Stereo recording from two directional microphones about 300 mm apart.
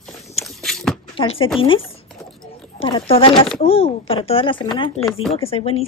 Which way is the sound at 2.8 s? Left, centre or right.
Centre.